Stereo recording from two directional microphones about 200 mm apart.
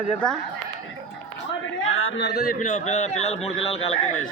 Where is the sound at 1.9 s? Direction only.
90° left; by 4.0 s 30° left (ahead or behind).